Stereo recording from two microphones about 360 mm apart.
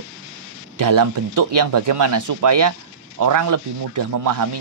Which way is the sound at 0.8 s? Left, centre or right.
Right.